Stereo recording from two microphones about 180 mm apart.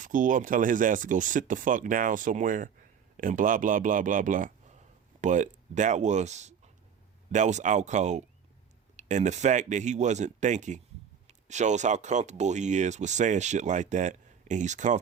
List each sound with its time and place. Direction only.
0.0 s speech: 45° right (ahead or behind)